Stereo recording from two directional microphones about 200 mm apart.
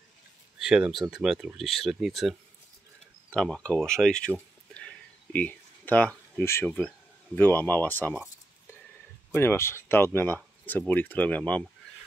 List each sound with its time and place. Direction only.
0.6 s speech: 5° right (ahead or behind)
4.7 s a sound: 5° left (ahead or behind)
7.3 s speech: 10° left (ahead or behind)
9.3 s speech: 10° left (ahead or behind)